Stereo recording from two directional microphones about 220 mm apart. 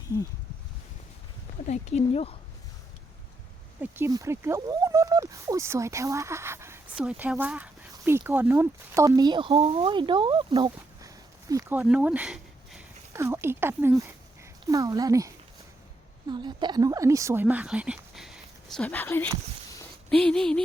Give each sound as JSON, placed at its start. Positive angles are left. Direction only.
{"t": 1.6, "sound": "speech", "side_deg": 30}
{"t": 3.8, "sound": "speech", "side_deg": -10}
{"t": 16.3, "sound": "a woman's voice", "side_deg": -20}